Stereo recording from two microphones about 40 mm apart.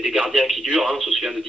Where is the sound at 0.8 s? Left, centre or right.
Centre.